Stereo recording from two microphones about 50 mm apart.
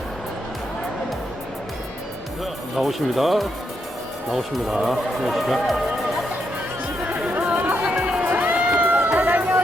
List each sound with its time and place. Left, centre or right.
2.7 s speech: centre
7.1 s chatter: right
7.9 s music: centre
8.3 s crowd: right
8.7 s run: right
9.1 s music: right